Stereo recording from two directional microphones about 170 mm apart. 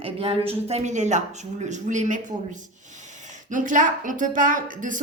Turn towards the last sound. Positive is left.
turn(degrees=-50)  # may be behind; listen again after turning